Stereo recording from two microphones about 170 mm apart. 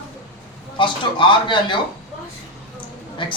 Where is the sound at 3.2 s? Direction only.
30° left (ahead or behind).